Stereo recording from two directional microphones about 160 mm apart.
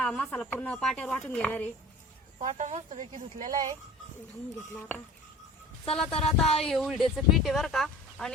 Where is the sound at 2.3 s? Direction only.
50° right (ahead or behind).